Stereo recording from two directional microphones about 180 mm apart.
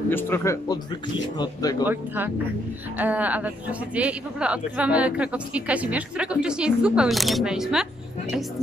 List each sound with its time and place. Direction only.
0.1 s speech: 15° left (ahead or behind)
1.9 s speech: 10° right (ahead or behind)